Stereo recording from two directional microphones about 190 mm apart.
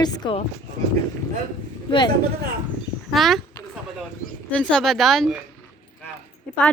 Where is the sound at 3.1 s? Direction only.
Centre (ahead or behind).